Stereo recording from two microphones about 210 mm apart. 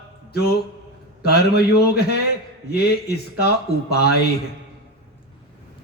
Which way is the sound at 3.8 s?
50° left (ahead or behind).